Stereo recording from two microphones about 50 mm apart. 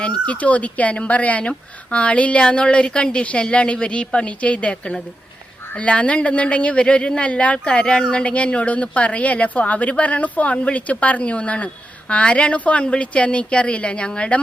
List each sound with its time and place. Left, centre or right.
0.0 s speech: left